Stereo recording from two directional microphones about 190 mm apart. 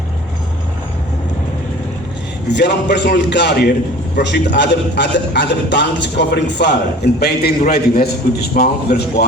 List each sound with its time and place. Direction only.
2.5 s a man's voice: 65° left (ahead or behind)